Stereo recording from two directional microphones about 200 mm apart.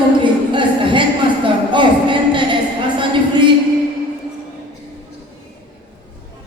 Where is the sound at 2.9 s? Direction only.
25° right (ahead or behind).